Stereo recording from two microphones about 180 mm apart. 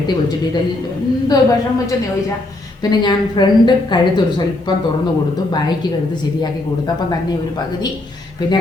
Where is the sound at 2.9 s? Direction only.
25° left (ahead or behind).